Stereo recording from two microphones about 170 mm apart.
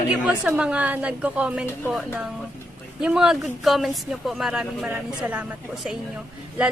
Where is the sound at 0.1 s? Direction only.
5° right (ahead or behind).